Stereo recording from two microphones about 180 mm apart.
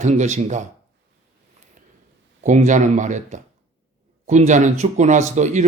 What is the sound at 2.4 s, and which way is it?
Speech, 40° right (ahead or behind).